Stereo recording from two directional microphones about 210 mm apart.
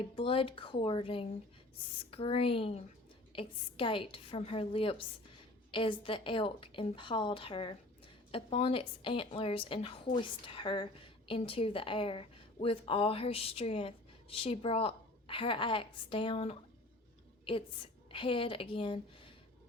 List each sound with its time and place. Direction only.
0.2 s a woman's voice: 25° left (ahead or behind)